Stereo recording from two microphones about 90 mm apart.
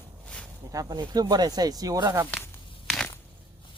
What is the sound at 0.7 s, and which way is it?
Speech, 45° right (ahead or behind).